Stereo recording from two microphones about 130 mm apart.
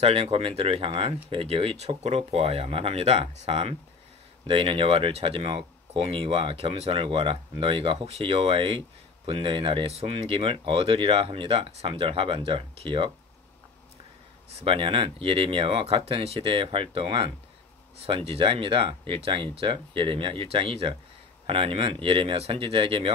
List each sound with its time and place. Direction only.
0.0 s speech: 50° right (ahead or behind)
14.6 s speech: 45° right (ahead or behind)